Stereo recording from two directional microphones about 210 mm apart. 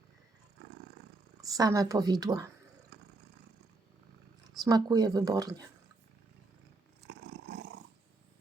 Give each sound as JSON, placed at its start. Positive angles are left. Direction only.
{"t": 1.4, "sound": "a woman's voice", "side_deg": -15}
{"t": 2.9, "sound": "vehicle", "side_deg": -55}
{"t": 4.6, "sound": "a woman's voice", "side_deg": -20}
{"t": 7.1, "sound": "roar", "side_deg": -50}